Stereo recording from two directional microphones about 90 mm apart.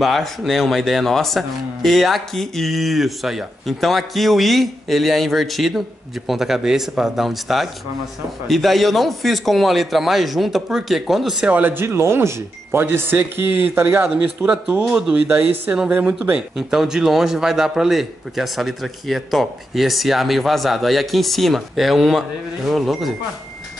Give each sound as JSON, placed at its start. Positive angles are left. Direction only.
{"t": 0.0, "sound": "a man's voice", "side_deg": 0}
{"t": 11.5, "sound": "speech", "side_deg": -25}
{"t": 14.1, "sound": "speech", "side_deg": -15}
{"t": 15.9, "sound": "a man's voice", "side_deg": -15}